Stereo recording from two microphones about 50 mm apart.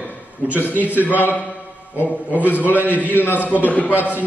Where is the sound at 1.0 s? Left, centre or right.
Left.